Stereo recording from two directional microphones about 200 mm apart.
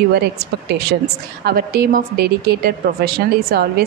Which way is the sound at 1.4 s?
50° right (ahead or behind).